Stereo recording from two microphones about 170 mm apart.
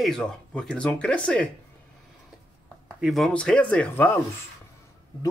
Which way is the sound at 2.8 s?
5° right (ahead or behind).